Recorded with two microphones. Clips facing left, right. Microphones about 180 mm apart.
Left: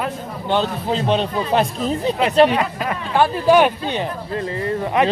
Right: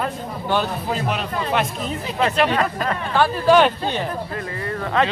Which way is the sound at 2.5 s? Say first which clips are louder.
Even; 15° left (ahead or behind).